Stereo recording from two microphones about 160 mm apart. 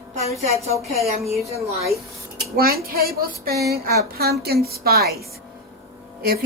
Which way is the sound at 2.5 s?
70° right (ahead or behind).